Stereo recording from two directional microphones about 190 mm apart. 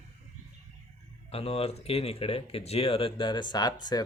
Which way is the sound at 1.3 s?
30° left (ahead or behind).